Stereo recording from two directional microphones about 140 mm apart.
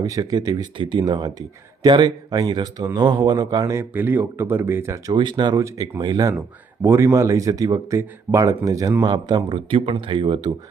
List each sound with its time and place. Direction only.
0.0 s speech: 25° right (ahead or behind)
5.1 s speech: 35° right (ahead or behind)